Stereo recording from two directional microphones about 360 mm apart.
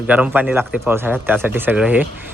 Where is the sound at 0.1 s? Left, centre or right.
Centre.